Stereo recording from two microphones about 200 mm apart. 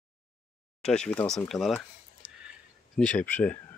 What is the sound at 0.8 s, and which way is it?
Speech, 5° left (ahead or behind).